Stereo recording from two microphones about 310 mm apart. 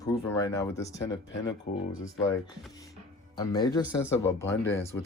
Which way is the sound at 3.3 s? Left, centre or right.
Centre.